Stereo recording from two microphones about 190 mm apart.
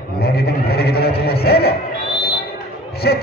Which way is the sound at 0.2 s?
55° left (ahead or behind).